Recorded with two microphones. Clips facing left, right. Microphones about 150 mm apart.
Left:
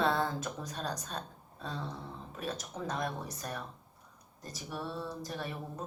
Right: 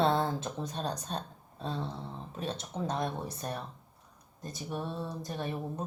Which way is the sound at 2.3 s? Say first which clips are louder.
Right 2 dB; 30° right (ahead or behind).